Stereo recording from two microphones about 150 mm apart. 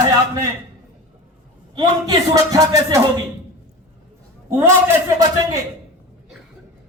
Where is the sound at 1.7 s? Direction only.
25° right (ahead or behind).